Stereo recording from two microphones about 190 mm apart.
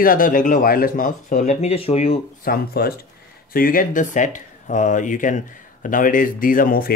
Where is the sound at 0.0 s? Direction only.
45° left (ahead or behind).